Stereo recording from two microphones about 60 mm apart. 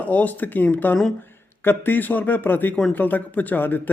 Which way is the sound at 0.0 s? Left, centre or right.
Left.